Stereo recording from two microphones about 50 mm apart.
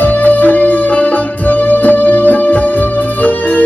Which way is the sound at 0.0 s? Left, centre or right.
Left.